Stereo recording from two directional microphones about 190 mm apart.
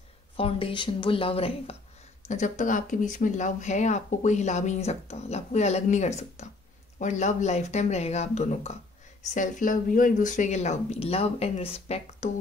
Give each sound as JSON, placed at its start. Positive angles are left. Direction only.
{"t": 0.4, "sound": "speech", "side_deg": 30}